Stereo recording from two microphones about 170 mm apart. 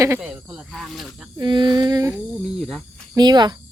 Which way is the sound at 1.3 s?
25° right (ahead or behind).